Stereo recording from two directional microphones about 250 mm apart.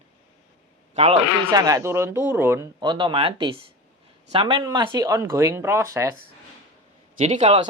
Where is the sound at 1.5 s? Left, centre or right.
Centre.